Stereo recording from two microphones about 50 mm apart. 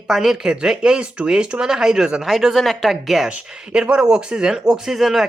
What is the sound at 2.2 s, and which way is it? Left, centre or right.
Speech, centre.